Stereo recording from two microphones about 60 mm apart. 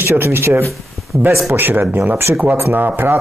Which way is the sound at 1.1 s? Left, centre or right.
Centre.